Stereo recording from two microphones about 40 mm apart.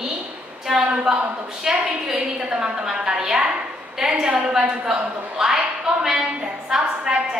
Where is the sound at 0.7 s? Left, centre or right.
Centre.